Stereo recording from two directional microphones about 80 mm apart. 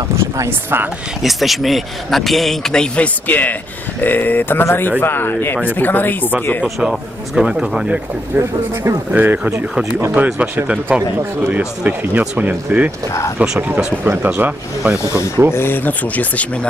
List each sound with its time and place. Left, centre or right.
0.1 s speech: right
1.2 s speech: centre
3.3 s speech: left
6.6 s speech: centre
8.4 s speech: right
9.1 s speech: right
15.1 s speech: right
15.5 s speech: left